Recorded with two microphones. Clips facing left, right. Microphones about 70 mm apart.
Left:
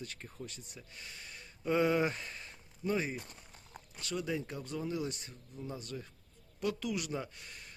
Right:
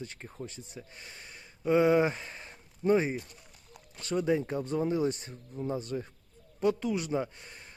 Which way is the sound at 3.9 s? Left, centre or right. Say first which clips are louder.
Right 8 dB; right.